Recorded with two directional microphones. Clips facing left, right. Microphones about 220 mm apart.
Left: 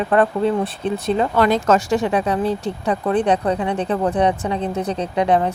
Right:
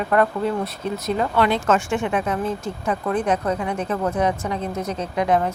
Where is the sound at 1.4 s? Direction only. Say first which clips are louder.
Left 3 dB; 40° left (ahead or behind).